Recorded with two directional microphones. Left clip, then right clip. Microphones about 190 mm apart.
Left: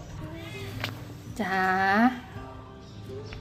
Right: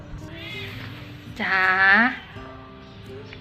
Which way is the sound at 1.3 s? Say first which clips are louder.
Right 6 dB; 20° left (ahead or behind).